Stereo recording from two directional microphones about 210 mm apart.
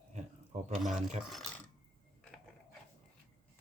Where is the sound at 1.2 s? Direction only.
Centre (ahead or behind).